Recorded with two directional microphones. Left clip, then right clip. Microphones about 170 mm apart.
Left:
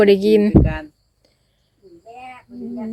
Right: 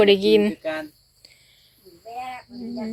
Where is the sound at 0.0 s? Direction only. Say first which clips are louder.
Left 3 dB; 50° left (ahead or behind).